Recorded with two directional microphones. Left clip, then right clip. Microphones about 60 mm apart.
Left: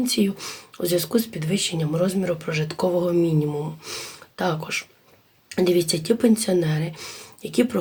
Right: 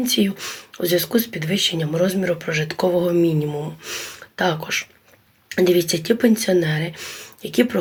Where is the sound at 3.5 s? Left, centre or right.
Left.